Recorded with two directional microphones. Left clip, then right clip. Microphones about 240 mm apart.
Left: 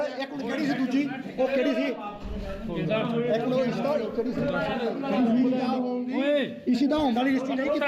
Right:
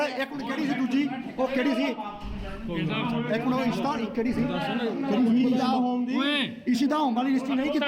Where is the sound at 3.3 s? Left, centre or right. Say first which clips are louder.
Even; right.